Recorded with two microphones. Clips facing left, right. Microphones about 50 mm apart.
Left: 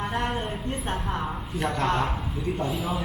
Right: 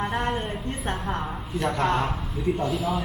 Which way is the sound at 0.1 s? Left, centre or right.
Centre.